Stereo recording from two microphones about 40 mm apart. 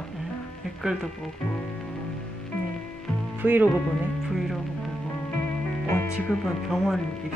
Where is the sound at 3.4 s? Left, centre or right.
Right.